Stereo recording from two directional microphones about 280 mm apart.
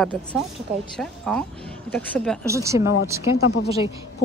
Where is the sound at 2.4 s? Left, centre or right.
Centre.